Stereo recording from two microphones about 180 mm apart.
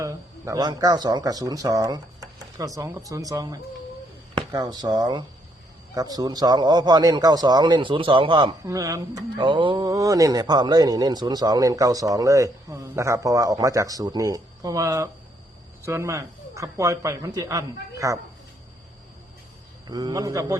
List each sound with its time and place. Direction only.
0.0 s speech: 15° right (ahead or behind)
19.9 s speech: 20° right (ahead or behind)